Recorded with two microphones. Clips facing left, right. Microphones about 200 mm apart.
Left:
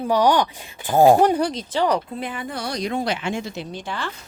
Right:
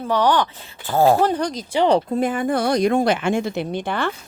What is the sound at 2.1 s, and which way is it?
Speech, 45° right (ahead or behind).